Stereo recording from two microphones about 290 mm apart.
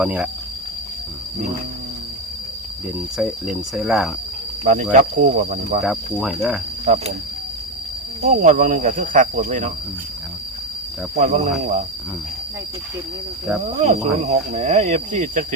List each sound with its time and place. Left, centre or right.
0.0 s speech: centre
3.2 s speech: centre
4.6 s speech: right
5.8 s speech: centre
6.8 s speech: right
8.2 s speech: right
11.2 s speech: right
13.8 s speech: right